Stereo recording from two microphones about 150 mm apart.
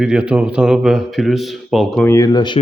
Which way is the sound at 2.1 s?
25° left (ahead or behind).